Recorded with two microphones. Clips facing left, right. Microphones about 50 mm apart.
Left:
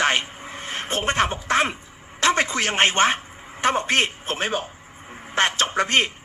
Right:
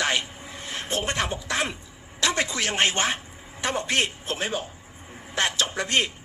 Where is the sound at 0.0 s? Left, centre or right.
Left.